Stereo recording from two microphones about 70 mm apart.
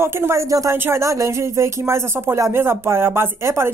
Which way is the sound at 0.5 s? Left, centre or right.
Right.